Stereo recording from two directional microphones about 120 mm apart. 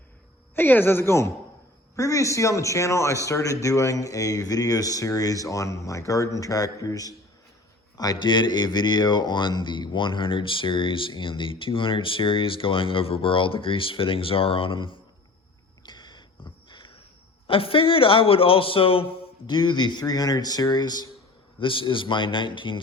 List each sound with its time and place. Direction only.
0.5 s speech: 15° left (ahead or behind); by 14.9 s 45° left (ahead or behind)
15.9 s a sound: 35° left (ahead or behind)
17.4 s speech: 50° left (ahead or behind)
19.5 s speech: 40° left (ahead or behind)
21.6 s speech: 45° left (ahead or behind)